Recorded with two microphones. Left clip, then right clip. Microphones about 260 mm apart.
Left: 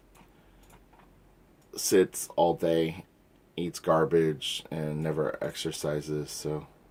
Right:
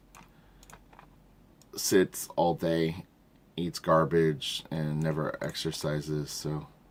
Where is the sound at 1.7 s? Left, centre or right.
Right.